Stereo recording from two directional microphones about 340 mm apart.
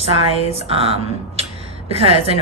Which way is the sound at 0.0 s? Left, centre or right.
Centre.